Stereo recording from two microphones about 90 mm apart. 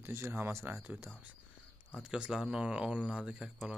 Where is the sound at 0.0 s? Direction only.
30° right (ahead or behind).